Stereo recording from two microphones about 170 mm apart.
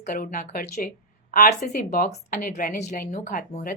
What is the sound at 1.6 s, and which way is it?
A woman's voice, 50° left (ahead or behind).